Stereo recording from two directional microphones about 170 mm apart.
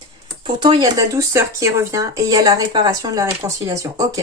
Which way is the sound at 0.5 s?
25° right (ahead or behind).